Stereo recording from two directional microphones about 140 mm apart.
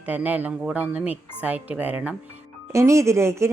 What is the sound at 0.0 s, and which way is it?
A woman's voice, 10° right (ahead or behind).